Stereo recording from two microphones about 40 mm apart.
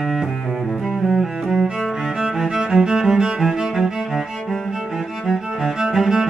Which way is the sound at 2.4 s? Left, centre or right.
Centre.